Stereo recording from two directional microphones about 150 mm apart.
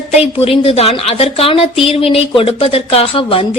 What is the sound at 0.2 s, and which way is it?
A woman's voice, 40° left (ahead or behind).